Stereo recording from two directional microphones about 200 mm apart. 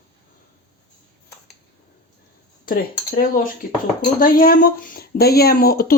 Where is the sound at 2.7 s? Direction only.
45° left (ahead or behind).